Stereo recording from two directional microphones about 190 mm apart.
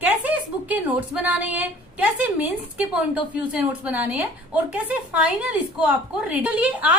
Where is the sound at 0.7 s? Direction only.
5° right (ahead or behind).